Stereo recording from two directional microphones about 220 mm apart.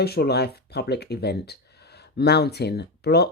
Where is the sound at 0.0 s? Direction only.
45° left (ahead or behind).